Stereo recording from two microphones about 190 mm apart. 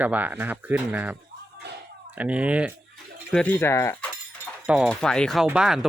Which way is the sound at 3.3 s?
10° left (ahead or behind).